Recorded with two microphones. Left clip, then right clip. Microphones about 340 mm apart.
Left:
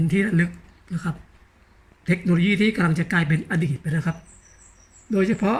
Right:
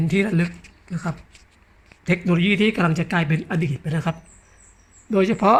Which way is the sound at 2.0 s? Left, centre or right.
Centre.